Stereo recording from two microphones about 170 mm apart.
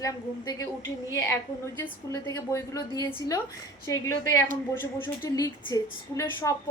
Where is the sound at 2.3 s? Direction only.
20° left (ahead or behind).